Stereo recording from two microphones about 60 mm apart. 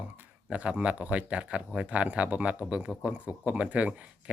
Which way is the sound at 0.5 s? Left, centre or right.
Right.